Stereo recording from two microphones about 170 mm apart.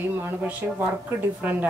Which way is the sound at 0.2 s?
10° right (ahead or behind).